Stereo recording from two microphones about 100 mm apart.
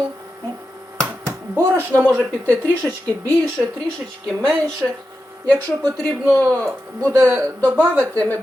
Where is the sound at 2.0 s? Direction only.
15° right (ahead or behind).